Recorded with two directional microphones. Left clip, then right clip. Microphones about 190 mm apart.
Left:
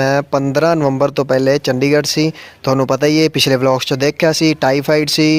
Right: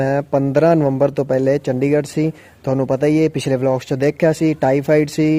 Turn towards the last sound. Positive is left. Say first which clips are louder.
# left 2 dB
turn(degrees=-5)  # may be behind; listen again after turning